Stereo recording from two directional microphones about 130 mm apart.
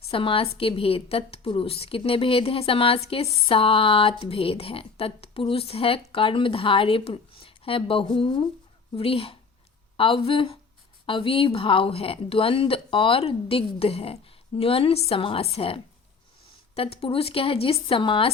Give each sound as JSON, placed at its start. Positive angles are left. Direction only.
{"t": 0.1, "sound": "a woman's voice", "side_deg": 45}